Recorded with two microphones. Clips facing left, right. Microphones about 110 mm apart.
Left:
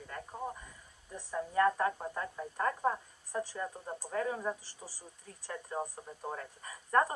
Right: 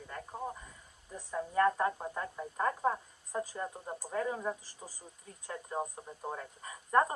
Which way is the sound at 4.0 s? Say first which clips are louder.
Even; 5° right (ahead or behind).